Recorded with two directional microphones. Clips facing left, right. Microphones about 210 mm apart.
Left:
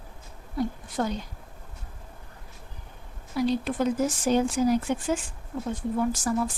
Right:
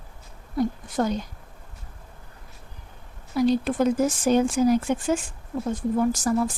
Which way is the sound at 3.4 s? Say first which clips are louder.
Right 4 dB; 45° right (ahead or behind).